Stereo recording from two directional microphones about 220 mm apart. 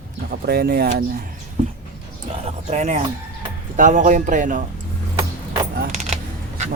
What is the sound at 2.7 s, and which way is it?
Speech, 30° right (ahead or behind).